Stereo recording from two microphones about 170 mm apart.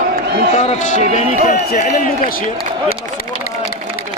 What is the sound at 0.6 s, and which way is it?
Speech, 45° left (ahead or behind).